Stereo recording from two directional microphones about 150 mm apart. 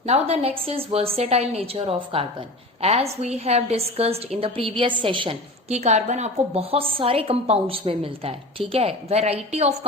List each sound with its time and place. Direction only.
0.0 s a woman's voice: 45° right (ahead or behind)